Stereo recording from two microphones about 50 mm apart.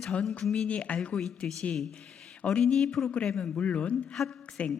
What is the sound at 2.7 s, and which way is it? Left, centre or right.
Speech, centre.